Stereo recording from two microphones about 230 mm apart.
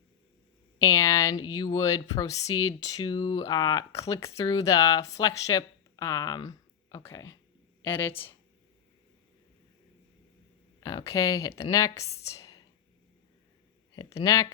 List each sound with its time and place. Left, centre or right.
0.9 s speech: centre
10.8 s speech: centre
12.2 s whispering: centre
13.9 s speech: centre